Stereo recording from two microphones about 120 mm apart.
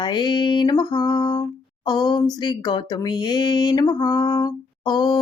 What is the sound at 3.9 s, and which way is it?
Mantra, 25° left (ahead or behind).